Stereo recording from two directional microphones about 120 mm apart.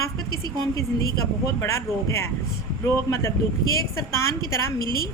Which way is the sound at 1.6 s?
25° left (ahead or behind).